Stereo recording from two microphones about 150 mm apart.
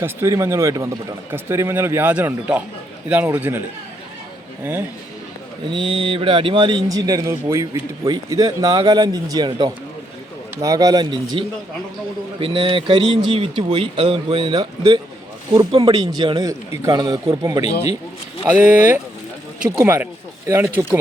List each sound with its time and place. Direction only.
0.0 s a man's voice: 20° right (ahead or behind)
5.7 s speech: 35° right (ahead or behind)
18.5 s a man's voice: 10° right (ahead or behind)